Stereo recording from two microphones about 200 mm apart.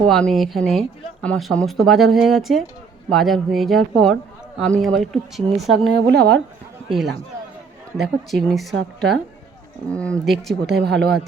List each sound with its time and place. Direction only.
0.1 s speech: centre (ahead or behind)
5.9 s speech: 60° right (ahead or behind)
6.8 s speech: centre (ahead or behind)
8.7 s speech: 60° right (ahead or behind)
9.9 s speech: 5° left (ahead or behind)
10.8 s speech: 60° right (ahead or behind)